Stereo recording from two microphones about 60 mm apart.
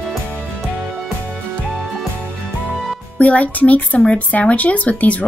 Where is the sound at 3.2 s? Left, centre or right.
Left.